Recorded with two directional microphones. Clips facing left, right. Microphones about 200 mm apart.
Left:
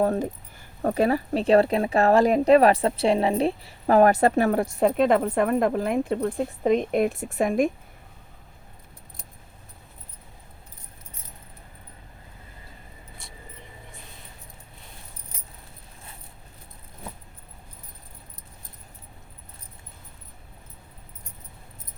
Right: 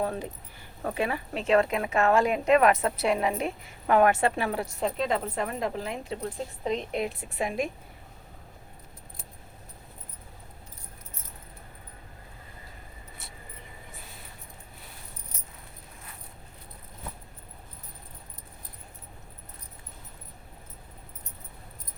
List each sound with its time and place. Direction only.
0.0 s speech: 45° left (ahead or behind)